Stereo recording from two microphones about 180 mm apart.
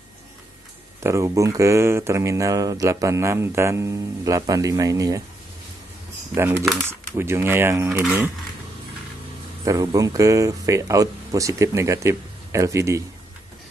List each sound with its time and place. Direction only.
1.0 s speech: 15° right (ahead or behind)
6.3 s speech: 15° right (ahead or behind)
9.7 s speech: 20° right (ahead or behind)